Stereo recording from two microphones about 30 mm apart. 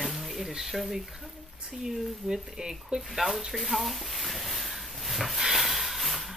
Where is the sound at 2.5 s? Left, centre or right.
Centre.